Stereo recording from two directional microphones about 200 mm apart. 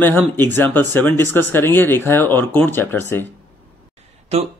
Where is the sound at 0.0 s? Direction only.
10° left (ahead or behind).